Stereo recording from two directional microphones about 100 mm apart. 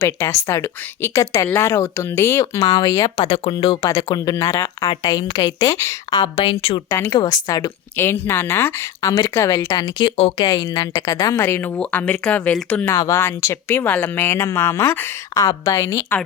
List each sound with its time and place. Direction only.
0.0 s speech: 30° left (ahead or behind)
2.6 s speech: 45° left (ahead or behind)
3.2 s speech: 60° left (ahead or behind)
3.8 s speech: 40° left (ahead or behind)
4.9 s speech: 45° left (ahead or behind)
6.2 s speech: 60° left (ahead or behind)
6.9 s speech: 30° left (ahead or behind)
7.9 s speech: 25° left (ahead or behind)
10.0 s speech: 50° left (ahead or behind)
11.3 s speech: 25° left (ahead or behind)
11.8 s speech: 15° left (ahead or behind)
12.9 s speech: 30° left (ahead or behind)